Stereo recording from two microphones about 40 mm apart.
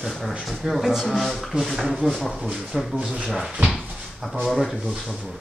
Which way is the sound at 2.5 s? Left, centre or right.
Centre.